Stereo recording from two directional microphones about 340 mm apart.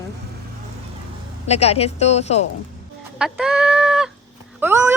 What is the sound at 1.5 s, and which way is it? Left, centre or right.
Speech, centre.